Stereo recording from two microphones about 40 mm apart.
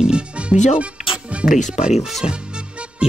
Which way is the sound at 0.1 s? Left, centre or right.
Right.